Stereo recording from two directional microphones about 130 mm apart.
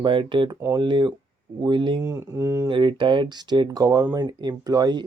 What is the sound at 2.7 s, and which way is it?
Speech, 40° right (ahead or behind).